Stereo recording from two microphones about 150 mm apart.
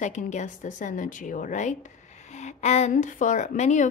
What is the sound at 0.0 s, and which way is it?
A woman's voice, 55° left (ahead or behind).